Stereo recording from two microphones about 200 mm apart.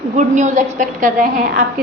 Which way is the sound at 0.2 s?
35° right (ahead or behind).